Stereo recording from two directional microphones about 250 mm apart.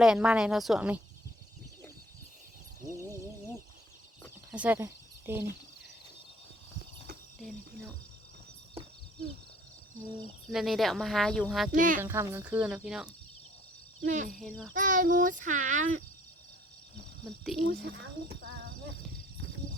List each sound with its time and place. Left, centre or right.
0.0 s speech: centre
4.5 s speech: centre
7.4 s speech: centre
10.5 s speech: centre
11.7 s a child's voice: right
12.0 s speech: centre
14.0 s speech: right
14.3 s speech: centre
14.7 s a child's voice: right
17.4 s speech: centre
17.8 s a child's voice: right